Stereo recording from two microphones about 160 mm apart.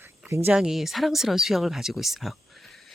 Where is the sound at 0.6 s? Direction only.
Centre (ahead or behind).